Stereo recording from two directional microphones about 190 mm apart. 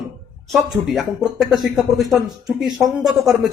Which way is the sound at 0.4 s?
Centre (ahead or behind).